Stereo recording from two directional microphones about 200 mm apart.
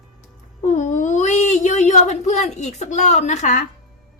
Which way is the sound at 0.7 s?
40° left (ahead or behind).